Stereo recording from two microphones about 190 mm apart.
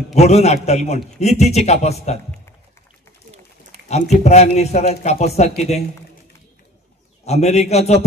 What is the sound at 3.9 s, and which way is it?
A man's voice, 35° left (ahead or behind).